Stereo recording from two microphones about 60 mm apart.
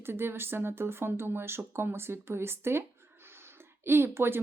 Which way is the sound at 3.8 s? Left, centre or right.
Right.